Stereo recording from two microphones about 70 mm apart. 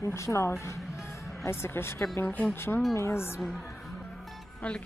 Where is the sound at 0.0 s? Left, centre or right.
Left.